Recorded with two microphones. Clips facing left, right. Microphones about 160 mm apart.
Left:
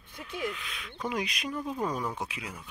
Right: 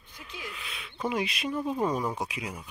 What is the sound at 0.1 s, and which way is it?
Speech, 55° left (ahead or behind).